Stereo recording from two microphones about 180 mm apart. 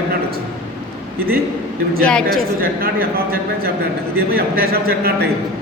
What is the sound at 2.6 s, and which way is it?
A man's voice, 55° right (ahead or behind).